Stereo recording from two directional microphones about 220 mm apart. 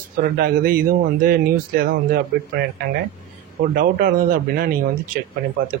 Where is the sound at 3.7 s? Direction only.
40° right (ahead or behind).